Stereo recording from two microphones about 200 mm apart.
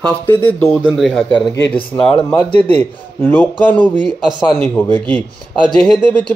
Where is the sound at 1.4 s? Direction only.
20° left (ahead or behind).